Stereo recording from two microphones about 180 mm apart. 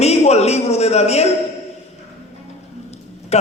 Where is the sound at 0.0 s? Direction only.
35° left (ahead or behind).